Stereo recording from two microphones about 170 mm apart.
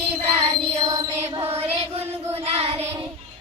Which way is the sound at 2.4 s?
35° right (ahead or behind).